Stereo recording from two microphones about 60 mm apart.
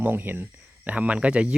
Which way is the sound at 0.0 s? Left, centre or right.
Right.